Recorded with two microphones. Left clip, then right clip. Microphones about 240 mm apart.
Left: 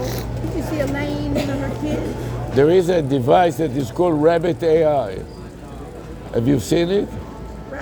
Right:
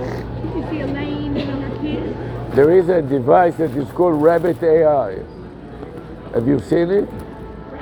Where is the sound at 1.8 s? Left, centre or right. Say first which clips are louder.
Even; left.